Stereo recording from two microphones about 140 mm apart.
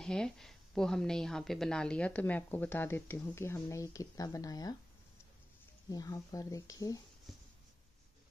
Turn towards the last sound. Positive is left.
turn(degrees=25)  # may be behind; listen again after turning